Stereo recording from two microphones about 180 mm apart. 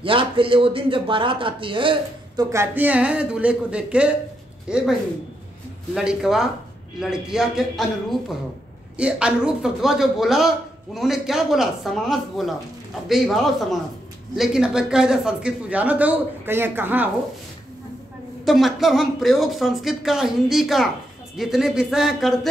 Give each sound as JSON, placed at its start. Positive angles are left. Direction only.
{"t": 0.0, "sound": "speech", "side_deg": -30}
{"t": 2.5, "sound": "speech", "side_deg": -10}
{"t": 5.9, "sound": "speech", "side_deg": -5}
{"t": 18.4, "sound": "speech", "side_deg": 0}